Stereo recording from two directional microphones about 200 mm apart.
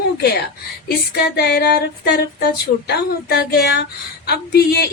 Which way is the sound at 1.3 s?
55° left (ahead or behind).